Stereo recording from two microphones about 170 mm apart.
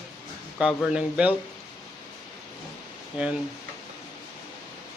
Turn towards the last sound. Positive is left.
turn(degrees=-10)  # may be behind; listen again after turning